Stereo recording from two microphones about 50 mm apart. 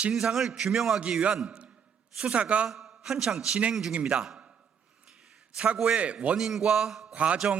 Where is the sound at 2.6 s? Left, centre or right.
Centre.